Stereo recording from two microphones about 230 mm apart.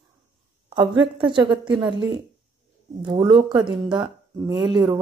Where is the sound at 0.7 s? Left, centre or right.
Right.